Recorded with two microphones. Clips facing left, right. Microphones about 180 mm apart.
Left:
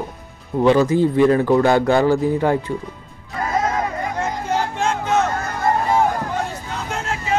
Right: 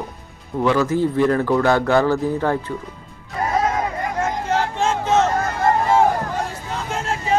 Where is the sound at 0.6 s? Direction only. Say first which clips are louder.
Left 3 dB; 20° left (ahead or behind).